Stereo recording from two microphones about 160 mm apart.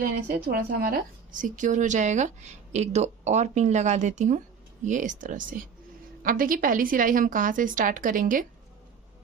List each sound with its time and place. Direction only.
0.0 s a woman's voice: 65° right (ahead or behind)